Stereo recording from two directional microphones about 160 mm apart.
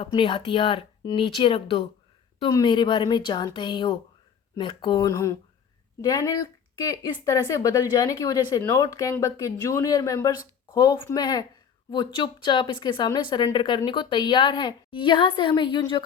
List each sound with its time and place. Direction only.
0.0 s speech: 35° left (ahead or behind)